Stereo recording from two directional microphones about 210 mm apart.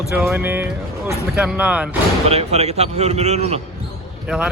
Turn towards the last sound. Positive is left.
turn(degrees=-5)  # may be behind; listen again after turning